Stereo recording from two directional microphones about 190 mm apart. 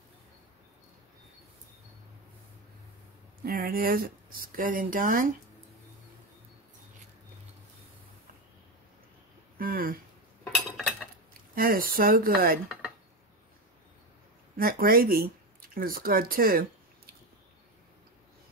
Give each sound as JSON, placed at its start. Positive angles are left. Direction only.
{"t": 3.4, "sound": "speech", "side_deg": -50}
{"t": 9.6, "sound": "a sound", "side_deg": -50}
{"t": 11.5, "sound": "speech", "side_deg": -50}
{"t": 14.6, "sound": "speech", "side_deg": -50}